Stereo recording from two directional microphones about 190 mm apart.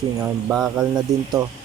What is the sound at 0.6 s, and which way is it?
Mantra, 5° right (ahead or behind).